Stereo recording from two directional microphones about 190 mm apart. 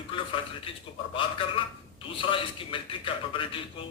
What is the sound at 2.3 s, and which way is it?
A man's voice, 25° left (ahead or behind).